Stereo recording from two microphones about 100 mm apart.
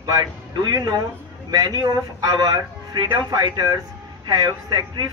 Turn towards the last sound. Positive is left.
turn(degrees=-40)  # may be behind; listen again after turning